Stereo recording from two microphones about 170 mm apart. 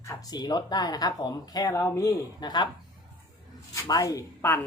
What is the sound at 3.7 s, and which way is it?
Speech, 20° left (ahead or behind).